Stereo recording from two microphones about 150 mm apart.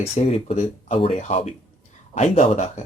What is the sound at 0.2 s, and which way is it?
Speech, 45° left (ahead or behind).